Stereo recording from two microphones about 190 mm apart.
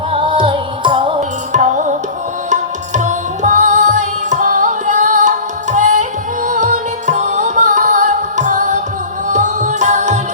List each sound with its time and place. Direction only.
0.1 s music: 25° right (ahead or behind)
1.5 s music: 40° right (ahead or behind)